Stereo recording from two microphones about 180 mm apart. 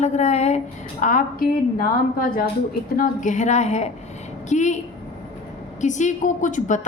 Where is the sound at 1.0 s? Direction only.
50° left (ahead or behind).